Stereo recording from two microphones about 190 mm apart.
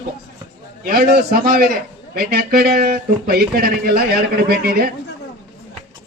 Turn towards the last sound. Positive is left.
turn(degrees=-55)  # may be behind; listen again after turning